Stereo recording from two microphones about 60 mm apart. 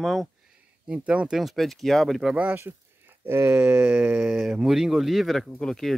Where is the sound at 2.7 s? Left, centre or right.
Right.